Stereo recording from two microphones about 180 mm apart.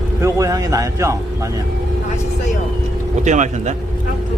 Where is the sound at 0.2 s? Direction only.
15° right (ahead or behind).